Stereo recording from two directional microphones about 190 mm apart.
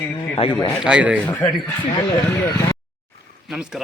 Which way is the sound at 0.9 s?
5° right (ahead or behind).